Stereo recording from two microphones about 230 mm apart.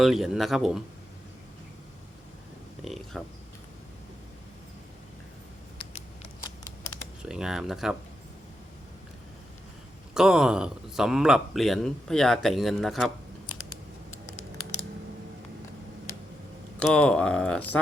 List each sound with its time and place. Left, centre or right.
0.0 s speech: centre
2.8 s a sound: centre
5.7 s patter: left
7.2 s speech: centre
10.2 s speech: centre
16.8 s speech: centre